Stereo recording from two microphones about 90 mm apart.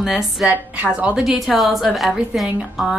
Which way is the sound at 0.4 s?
15° right (ahead or behind).